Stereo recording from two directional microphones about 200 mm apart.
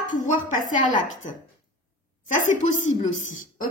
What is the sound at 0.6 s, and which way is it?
Speech, 40° left (ahead or behind).